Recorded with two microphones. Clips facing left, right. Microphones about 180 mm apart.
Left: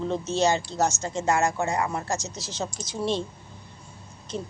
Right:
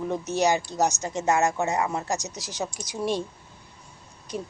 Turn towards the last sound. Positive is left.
turn(degrees=-15)  # may be behind; listen again after turning